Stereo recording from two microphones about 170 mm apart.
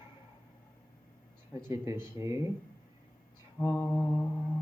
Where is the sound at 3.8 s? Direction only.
15° left (ahead or behind).